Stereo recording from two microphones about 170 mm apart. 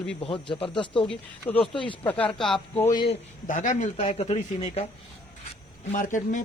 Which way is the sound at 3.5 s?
45° left (ahead or behind).